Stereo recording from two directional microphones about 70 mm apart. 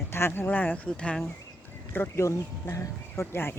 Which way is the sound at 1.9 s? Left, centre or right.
Left.